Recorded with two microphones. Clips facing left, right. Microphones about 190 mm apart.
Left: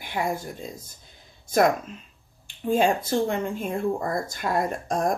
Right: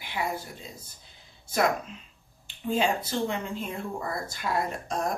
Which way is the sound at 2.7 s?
50° left (ahead or behind).